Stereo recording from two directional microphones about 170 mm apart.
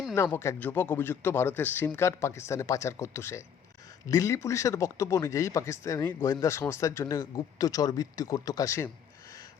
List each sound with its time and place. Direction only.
0.1 s speech: 10° left (ahead or behind)